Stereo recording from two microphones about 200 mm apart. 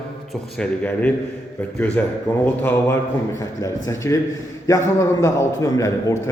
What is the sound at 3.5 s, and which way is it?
A man's voice, 15° left (ahead or behind).